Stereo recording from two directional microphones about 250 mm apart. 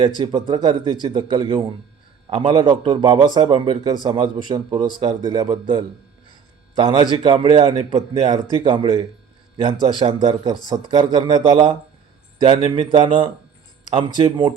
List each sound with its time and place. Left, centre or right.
0.2 s a man's voice: centre